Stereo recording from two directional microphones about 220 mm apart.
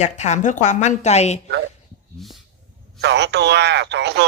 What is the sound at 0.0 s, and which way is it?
A woman's voice, 30° left (ahead or behind).